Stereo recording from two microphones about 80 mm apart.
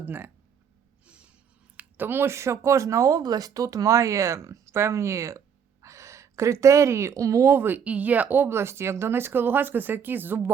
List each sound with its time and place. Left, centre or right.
0.0 s speech: right
1.0 s a sound: centre
1.7 s a woman's voice: right